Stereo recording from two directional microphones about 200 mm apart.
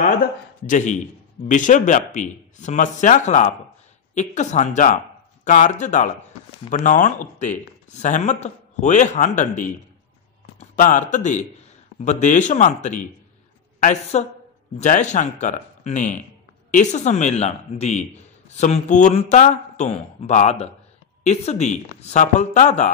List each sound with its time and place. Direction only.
0.7 s speech: 40° left (ahead or behind)
14.1 s speech: 35° left (ahead or behind)